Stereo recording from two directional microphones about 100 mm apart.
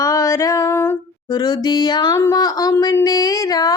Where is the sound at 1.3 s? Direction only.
45° left (ahead or behind).